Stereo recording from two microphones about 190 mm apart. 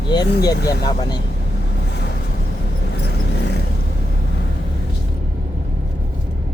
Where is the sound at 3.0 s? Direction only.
60° left (ahead or behind).